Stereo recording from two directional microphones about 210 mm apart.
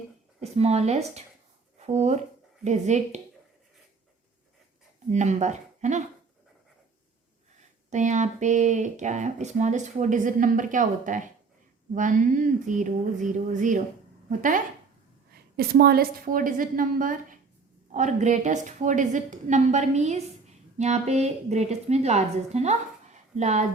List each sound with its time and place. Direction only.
0.5 s speech: 30° right (ahead or behind)
5.1 s speech: 35° right (ahead or behind)
7.9 s speech: 35° right (ahead or behind)